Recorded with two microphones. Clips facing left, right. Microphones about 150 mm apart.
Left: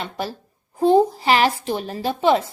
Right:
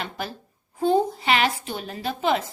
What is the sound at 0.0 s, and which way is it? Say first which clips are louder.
A woman's voice: left 4 dB; 30° left (ahead or behind).